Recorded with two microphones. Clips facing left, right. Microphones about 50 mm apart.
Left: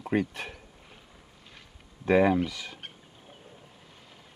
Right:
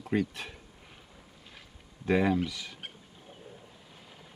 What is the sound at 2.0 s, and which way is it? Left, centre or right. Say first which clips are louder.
Speech: left 4 dB; left.